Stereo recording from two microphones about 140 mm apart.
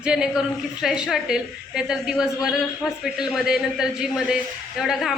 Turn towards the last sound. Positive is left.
turn(degrees=0)  # may be behind; listen again after turning